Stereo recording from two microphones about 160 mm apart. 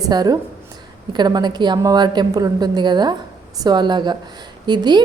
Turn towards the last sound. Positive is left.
turn(degrees=-25)  # may be behind; listen again after turning